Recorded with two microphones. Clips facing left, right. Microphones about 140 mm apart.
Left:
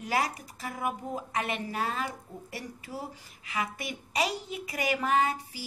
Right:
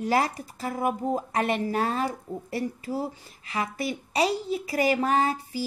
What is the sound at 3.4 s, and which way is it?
Speech, 35° right (ahead or behind).